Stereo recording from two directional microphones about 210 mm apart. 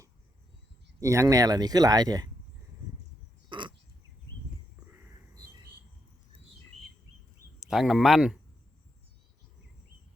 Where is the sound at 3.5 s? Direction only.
20° right (ahead or behind).